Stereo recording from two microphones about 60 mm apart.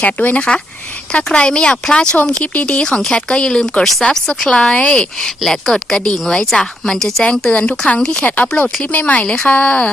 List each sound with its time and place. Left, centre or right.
0.0 s a woman's voice: left; by 7.3 s centre
7.3 s a woman's voice: centre
8.2 s a woman's voice: left
9.2 s a woman's voice: centre